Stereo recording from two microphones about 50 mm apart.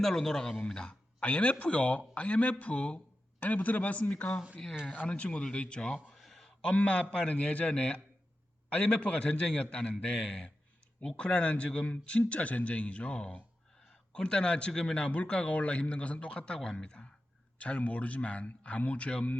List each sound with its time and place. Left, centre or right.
0.0 s a man's voice: centre
6.1 s a sound: centre
6.7 s speech: left